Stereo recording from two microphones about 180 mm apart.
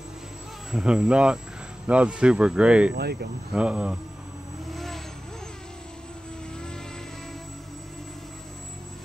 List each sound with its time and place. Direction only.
0.7 s speech: centre (ahead or behind)
2.9 s speech: 60° right (ahead or behind)
3.5 s speech: 5° right (ahead or behind)
4.7 s vehicle: centre (ahead or behind)